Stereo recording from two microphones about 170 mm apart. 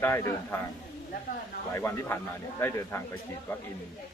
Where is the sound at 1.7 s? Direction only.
15° left (ahead or behind).